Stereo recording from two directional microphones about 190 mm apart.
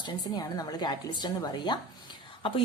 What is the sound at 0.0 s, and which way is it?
A woman's voice, 20° left (ahead or behind).